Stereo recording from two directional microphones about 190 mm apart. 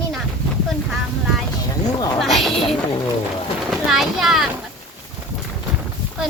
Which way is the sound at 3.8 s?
Centre (ahead or behind).